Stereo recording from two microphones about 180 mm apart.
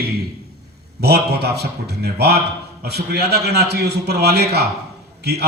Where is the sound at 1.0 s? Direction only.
65° right (ahead or behind).